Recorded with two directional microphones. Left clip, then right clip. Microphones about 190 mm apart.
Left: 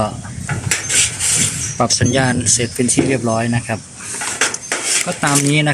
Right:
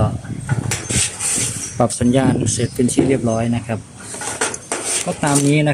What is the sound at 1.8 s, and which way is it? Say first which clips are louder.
Speech: left 2 dB; 20° right (ahead or behind).